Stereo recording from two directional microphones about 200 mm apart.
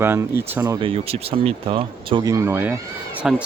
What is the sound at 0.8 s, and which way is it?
Speech, 30° right (ahead or behind).